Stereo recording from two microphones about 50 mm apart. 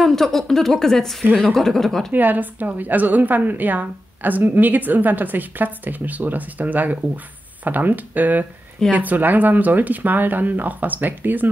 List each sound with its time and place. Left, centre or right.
0.0 s speech: centre
2.1 s a woman's voice: right